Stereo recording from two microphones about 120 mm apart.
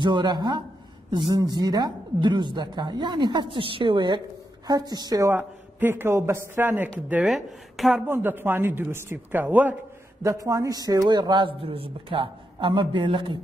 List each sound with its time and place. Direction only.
0.0 s a man's voice: 35° right (ahead or behind)
5.3 s a man's voice: 15° right (ahead or behind)
7.3 s a woman's voice: centre (ahead or behind)
8.1 s a man's voice: 20° right (ahead or behind)
10.2 s a man's voice: 25° right (ahead or behind); by 13.4 s 45° right (ahead or behind)